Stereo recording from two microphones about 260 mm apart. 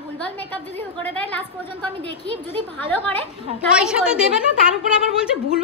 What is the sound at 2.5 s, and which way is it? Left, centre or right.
Speech, centre.